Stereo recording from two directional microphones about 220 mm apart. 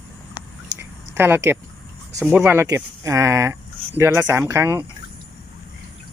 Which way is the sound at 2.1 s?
5° right (ahead or behind).